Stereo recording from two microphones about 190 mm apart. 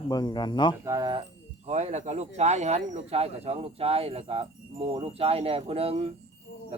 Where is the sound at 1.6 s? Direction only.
35° right (ahead or behind).